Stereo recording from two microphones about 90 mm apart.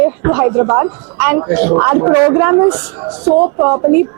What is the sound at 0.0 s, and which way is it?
A woman's voice, 15° right (ahead or behind).